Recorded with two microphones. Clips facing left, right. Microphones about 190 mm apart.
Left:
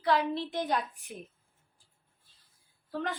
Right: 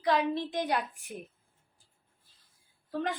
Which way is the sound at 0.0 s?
15° right (ahead or behind).